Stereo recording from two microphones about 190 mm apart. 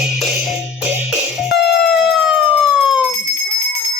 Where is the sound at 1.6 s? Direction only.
60° left (ahead or behind).